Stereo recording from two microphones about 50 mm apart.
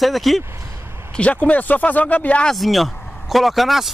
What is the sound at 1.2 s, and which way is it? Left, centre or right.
Speech, left.